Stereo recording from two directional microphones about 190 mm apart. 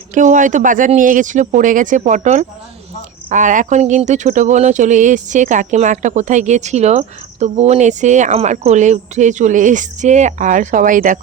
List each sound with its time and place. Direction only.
0.1 s speech: 40° right (ahead or behind)